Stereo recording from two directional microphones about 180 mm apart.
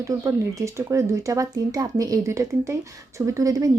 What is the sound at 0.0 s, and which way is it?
A woman's voice, 20° right (ahead or behind).